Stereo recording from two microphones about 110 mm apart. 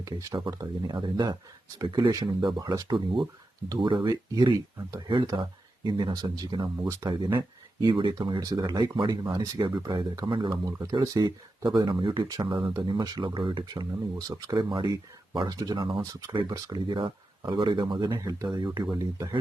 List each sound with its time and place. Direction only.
0.0 s speech: 30° right (ahead or behind)
0.5 s speech: 40° right (ahead or behind)
3.8 s speech: 50° right (ahead or behind)
4.1 s speech: 35° right (ahead or behind)
7.3 s a sound: 40° right (ahead or behind)
7.9 s speech: 45° right (ahead or behind)
10.9 s speech: 35° right (ahead or behind)